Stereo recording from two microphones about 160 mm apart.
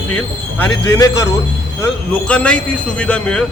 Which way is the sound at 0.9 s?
20° left (ahead or behind).